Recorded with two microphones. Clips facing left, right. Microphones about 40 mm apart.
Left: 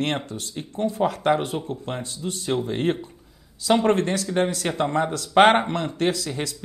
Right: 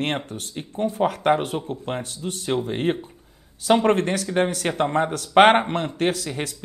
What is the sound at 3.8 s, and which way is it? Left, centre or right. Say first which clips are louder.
Speech: right 1 dB; right.